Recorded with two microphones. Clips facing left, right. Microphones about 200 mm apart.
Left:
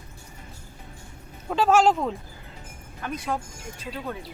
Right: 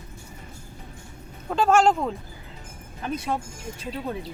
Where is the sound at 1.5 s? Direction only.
Centre (ahead or behind).